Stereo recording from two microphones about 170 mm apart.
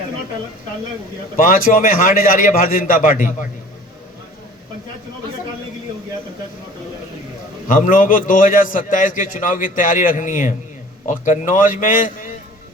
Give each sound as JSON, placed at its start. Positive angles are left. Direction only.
{"t": 1.4, "sound": "a man's voice", "side_deg": 55}
{"t": 7.7, "sound": "a man's voice", "side_deg": 55}